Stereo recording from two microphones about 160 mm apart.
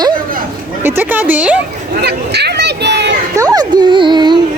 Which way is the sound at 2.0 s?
90° right.